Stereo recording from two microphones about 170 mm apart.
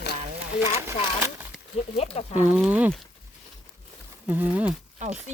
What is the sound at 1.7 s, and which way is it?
Speech, 40° left (ahead or behind).